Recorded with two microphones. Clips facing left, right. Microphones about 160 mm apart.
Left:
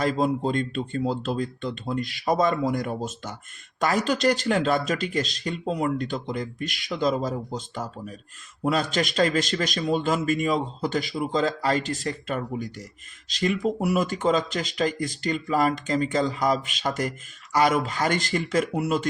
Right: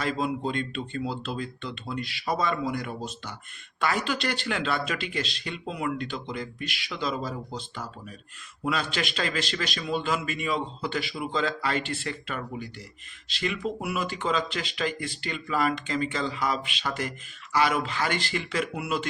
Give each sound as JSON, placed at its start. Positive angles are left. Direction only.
{"t": 0.0, "sound": "speech", "side_deg": 40}